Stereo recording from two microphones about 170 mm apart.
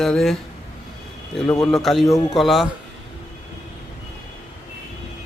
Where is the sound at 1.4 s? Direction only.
20° left (ahead or behind).